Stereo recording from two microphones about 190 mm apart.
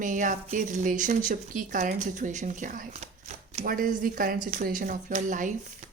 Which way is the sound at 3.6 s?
45° right (ahead or behind).